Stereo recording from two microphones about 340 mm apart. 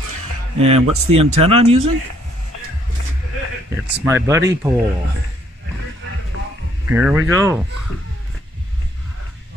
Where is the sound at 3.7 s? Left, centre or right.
Centre.